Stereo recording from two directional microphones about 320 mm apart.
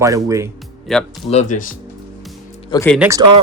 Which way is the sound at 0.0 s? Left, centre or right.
Centre.